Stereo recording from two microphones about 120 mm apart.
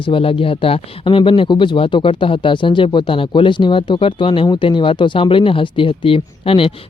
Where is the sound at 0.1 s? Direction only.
50° left (ahead or behind).